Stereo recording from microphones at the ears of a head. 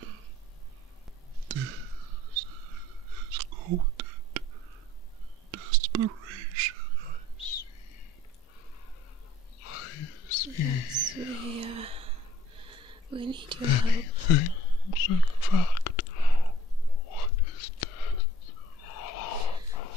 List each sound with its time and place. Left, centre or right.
1.5 s a sound: right
5.5 s whispering: right
7.4 s whispering: left
9.6 s wild animals: left
10.9 s a sound: right
13.7 s whispering: left